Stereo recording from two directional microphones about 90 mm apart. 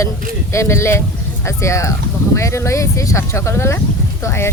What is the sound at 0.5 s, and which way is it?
A woman's voice, 30° left (ahead or behind).